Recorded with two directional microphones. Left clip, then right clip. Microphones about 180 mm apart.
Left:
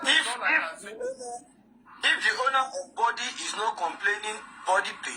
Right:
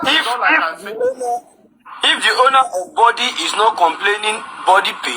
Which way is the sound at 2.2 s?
50° right (ahead or behind).